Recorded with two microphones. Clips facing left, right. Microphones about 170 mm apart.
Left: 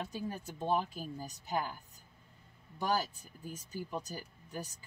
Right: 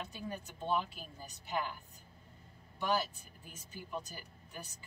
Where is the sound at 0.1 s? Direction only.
40° left (ahead or behind).